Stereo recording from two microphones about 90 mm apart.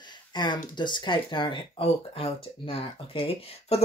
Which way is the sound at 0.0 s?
55° left (ahead or behind).